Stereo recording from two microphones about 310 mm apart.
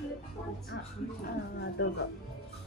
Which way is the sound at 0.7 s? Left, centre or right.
Left.